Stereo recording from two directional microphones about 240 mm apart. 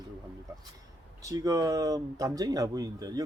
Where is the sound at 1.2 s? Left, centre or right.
Centre.